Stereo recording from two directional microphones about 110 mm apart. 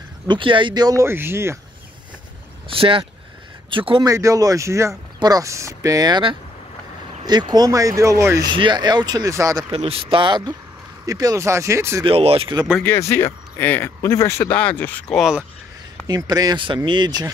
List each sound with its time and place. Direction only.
0.3 s speech: 50° right (ahead or behind)
1.0 s speech: 20° right (ahead or behind)
2.7 s speech: 55° right (ahead or behind)
4.0 s speech: 30° right (ahead or behind)
8.5 s speech: 45° right (ahead or behind)
9.7 s speech: 60° right (ahead or behind)
11.1 s speech: 35° right (ahead or behind)
12.0 s speech: 60° right (ahead or behind)
12.8 s speech: 20° left (ahead or behind)
14.5 s speech: 10° left (ahead or behind)
15.1 s speech: 5° right (ahead or behind)
16.2 s speech: 35° right (ahead or behind)